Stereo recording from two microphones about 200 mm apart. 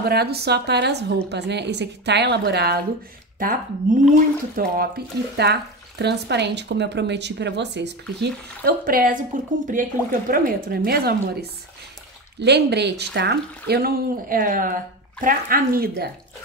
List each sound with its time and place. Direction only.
0.0 s a woman's voice: 50° right (ahead or behind)
12.4 s a woman's voice: 55° right (ahead or behind)